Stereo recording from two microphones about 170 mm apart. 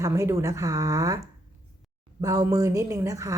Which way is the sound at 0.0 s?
15° right (ahead or behind).